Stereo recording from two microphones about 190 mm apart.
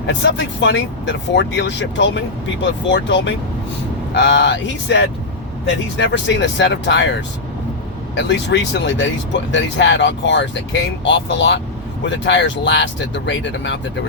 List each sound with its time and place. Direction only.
0.2 s speech: 65° left (ahead or behind)
6.0 s speech: 70° left (ahead or behind)
8.1 s speech: 65° left (ahead or behind)